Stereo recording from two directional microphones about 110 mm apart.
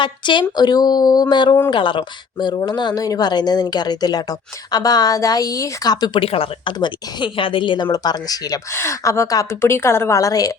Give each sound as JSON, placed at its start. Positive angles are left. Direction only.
{"t": 0.0, "sound": "speech", "side_deg": 45}
{"t": 6.1, "sound": "speech", "side_deg": 60}
{"t": 6.7, "sound": "a woman's voice", "side_deg": 45}